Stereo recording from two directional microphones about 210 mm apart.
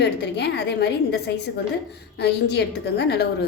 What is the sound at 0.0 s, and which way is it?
A woman's voice, 55° left (ahead or behind).